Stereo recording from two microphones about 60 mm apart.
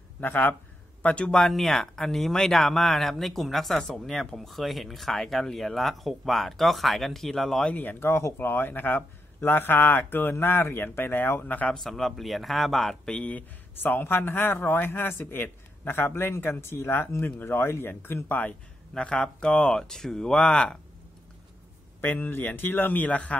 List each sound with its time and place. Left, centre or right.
0.2 s a man's voice: left
1.0 s speech: centre
1.4 s speech: centre
7.6 s a man's voice: left
11.7 s speech: centre
13.1 s a man's voice: left
18.9 s speech: centre
22.0 s a man's voice: left